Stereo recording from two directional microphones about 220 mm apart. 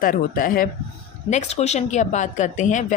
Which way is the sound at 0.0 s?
40° left (ahead or behind).